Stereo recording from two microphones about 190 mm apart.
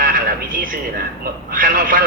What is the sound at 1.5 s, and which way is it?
Speech, 50° right (ahead or behind).